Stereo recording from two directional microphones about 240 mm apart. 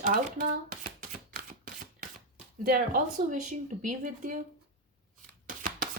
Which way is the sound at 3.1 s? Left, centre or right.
Right.